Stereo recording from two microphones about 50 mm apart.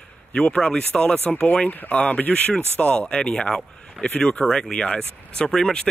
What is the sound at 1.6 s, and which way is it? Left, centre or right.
Speech, left.